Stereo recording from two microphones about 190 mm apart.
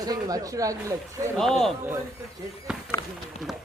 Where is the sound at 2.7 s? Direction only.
5° right (ahead or behind).